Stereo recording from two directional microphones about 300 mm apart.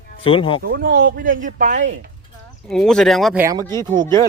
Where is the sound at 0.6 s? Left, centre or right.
Right.